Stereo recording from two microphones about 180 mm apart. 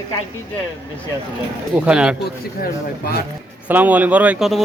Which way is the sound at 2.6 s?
55° left (ahead or behind).